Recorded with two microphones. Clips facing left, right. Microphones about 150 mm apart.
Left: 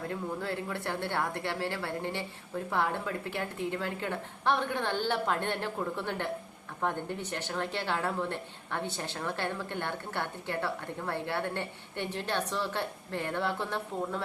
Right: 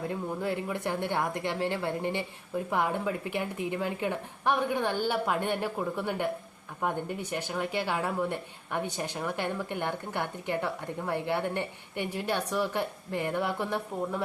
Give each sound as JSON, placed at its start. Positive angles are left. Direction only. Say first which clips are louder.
{"t": 0.1, "sound": "speech", "louder": "right 3 dB", "side_deg": -15}